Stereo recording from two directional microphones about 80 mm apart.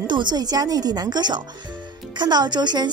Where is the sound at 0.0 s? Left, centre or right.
Right.